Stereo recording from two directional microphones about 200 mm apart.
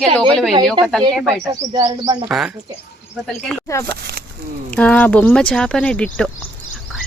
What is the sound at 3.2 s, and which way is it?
Speech, centre (ahead or behind).